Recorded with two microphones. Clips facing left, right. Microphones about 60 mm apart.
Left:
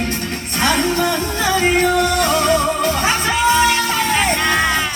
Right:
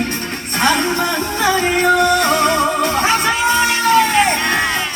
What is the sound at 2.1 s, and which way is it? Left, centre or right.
Music, right.